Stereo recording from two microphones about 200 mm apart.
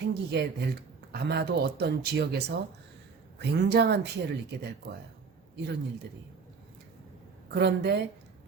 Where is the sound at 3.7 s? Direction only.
55° right (ahead or behind).